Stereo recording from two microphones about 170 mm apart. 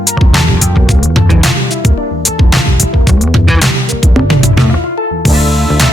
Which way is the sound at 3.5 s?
Centre (ahead or behind).